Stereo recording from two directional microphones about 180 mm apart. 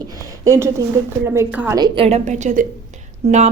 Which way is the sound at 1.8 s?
30° right (ahead or behind).